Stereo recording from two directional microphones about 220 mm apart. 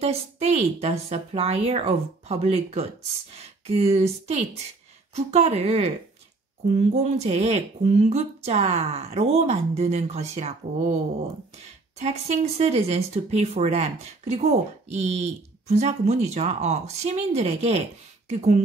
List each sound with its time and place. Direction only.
0.0 s speech: 30° right (ahead or behind)
12.0 s speech: 30° right (ahead or behind)